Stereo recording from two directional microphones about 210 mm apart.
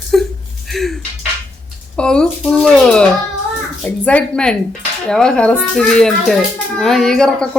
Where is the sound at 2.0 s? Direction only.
5° left (ahead or behind).